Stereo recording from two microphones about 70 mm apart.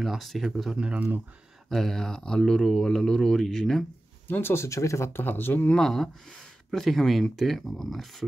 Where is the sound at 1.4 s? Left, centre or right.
Centre.